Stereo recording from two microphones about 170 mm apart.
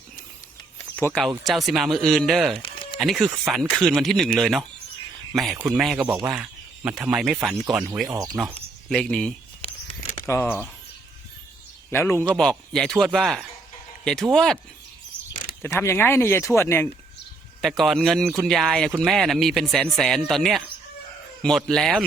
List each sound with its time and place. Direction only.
0.9 s speech: 10° left (ahead or behind)
1.5 s speech: centre (ahead or behind)
2.6 s a sound: 30° left (ahead or behind)
3.0 s speech: centre (ahead or behind)
6.3 s a sound: 10° right (ahead or behind)
7.0 s speech: 5° right (ahead or behind)
8.0 s speech: 20° right (ahead or behind)
8.9 s speech: 5° left (ahead or behind)
11.9 s speech: 15° left (ahead or behind)
15.3 s a sound: 50° left (ahead or behind)
15.6 s speech: 15° left (ahead or behind)
17.6 s speech: centre (ahead or behind)